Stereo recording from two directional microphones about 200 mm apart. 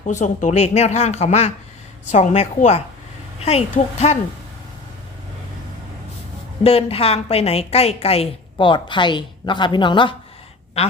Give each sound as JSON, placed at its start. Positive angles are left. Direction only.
{"t": 0.0, "sound": "speech", "side_deg": 35}
{"t": 6.6, "sound": "a woman's voice", "side_deg": 30}